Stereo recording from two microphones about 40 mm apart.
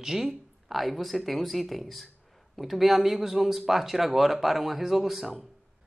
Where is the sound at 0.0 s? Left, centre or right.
Centre.